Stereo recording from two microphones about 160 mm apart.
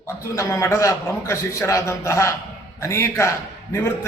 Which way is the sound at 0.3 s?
15° left (ahead or behind).